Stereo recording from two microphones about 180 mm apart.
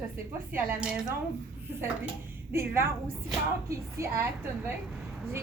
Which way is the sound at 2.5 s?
15° right (ahead or behind).